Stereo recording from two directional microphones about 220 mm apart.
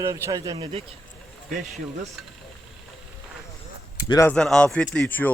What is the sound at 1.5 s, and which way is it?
Speech, 35° right (ahead or behind).